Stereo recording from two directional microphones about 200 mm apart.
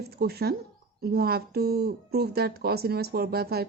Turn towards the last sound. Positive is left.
turn(degrees=-50)  # may be behind; listen again after turning